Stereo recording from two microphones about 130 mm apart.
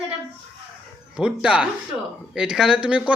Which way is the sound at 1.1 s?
5° right (ahead or behind).